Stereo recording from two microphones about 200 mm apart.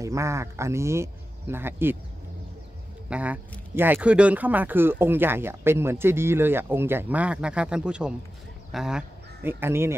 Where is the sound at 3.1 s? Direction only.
5° right (ahead or behind).